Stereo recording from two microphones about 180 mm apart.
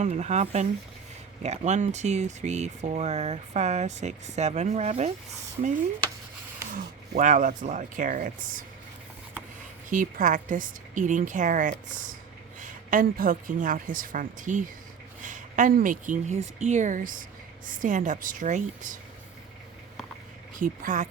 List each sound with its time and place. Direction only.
0.0 s speech: 40° right (ahead or behind)
6.7 s a woman's voice: 45° right (ahead or behind)
9.9 s a woman's voice: 45° right (ahead or behind)
20.6 s a woman's voice: 45° right (ahead or behind)